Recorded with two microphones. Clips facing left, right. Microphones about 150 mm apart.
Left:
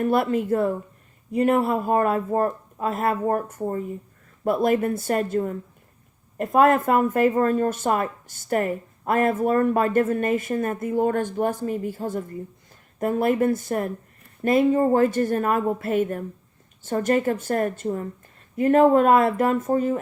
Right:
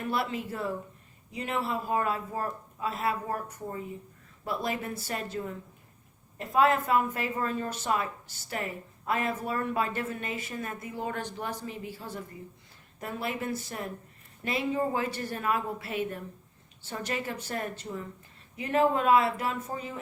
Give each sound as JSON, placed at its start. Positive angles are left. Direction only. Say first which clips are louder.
{"t": 0.0, "sound": "a woman's voice", "louder": "left 10 dB", "side_deg": 50}